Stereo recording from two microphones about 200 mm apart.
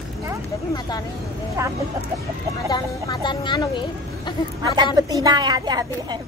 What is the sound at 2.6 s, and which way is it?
Speech, 20° left (ahead or behind).